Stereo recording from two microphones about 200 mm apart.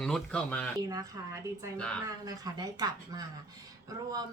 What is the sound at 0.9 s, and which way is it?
Speech, 15° right (ahead or behind).